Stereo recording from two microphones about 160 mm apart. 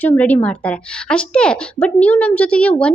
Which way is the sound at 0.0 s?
10° left (ahead or behind).